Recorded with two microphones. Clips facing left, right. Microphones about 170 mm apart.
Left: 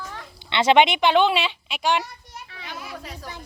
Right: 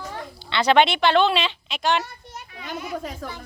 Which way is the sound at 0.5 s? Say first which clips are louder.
Left 1 dB; 20° left (ahead or behind).